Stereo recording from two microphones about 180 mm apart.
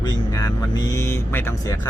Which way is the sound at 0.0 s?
20° left (ahead or behind).